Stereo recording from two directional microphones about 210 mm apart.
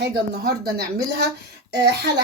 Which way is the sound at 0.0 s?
50° right (ahead or behind).